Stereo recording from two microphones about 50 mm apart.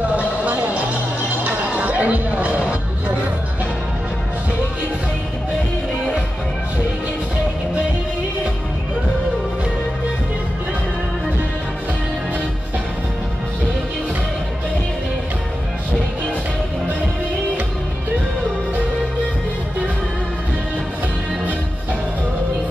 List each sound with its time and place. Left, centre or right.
1.4 s music: right